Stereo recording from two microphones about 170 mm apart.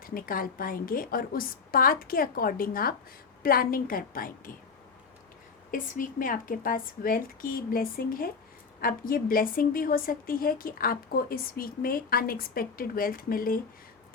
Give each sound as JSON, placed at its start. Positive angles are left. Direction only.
{"t": 0.0, "sound": "a woman's voice", "side_deg": 60}
{"t": 5.7, "sound": "a woman's voice", "side_deg": 55}